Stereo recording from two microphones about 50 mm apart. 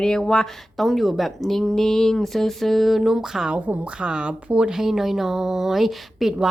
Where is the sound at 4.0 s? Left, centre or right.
Centre.